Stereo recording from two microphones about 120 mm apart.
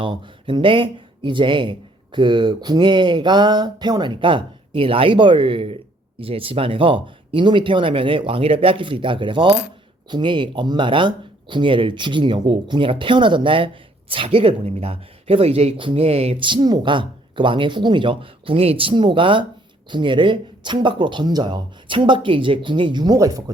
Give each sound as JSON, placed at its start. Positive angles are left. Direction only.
{"t": 0.0, "sound": "speech", "side_deg": -45}